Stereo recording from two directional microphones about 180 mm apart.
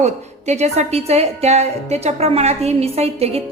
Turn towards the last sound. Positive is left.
turn(degrees=-35)  # may be behind; listen again after turning